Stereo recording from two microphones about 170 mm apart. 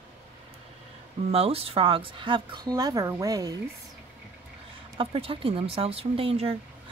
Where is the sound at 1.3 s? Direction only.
35° right (ahead or behind); by 3.6 s 20° right (ahead or behind).